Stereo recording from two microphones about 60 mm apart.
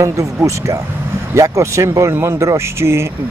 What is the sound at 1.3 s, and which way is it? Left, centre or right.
Speech, right.